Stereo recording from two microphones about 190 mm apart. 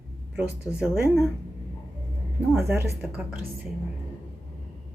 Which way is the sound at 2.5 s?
5° right (ahead or behind).